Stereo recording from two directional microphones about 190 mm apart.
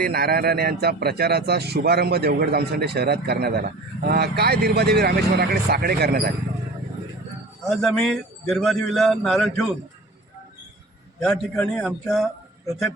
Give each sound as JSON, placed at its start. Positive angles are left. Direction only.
{"t": 0.0, "sound": "a man's voice", "side_deg": -55}
{"t": 7.6, "sound": "a man's voice", "side_deg": 0}
{"t": 11.2, "sound": "a man's voice", "side_deg": 5}